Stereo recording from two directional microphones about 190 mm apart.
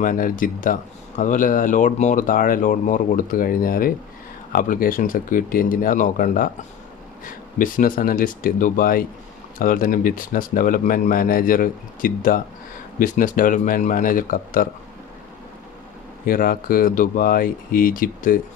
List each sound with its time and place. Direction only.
0.0 s speech: 45° left (ahead or behind)
16.3 s speech: 50° left (ahead or behind)